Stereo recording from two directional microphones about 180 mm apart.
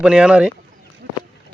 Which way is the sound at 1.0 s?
60° right (ahead or behind).